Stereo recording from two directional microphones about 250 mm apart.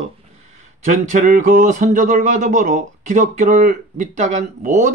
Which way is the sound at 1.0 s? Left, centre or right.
Right.